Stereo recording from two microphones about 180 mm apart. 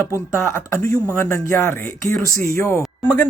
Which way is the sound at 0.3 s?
15° left (ahead or behind).